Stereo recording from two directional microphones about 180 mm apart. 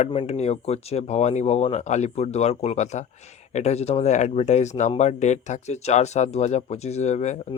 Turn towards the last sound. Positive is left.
turn(degrees=40)  # may be behind; listen again after turning